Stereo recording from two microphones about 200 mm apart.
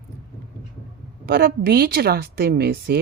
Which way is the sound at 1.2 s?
50° right (ahead or behind).